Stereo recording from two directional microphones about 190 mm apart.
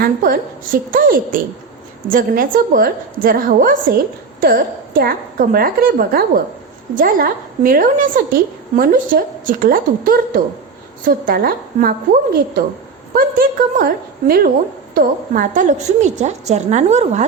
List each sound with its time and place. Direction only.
0.0 s a woman's voice: 50° right (ahead or behind)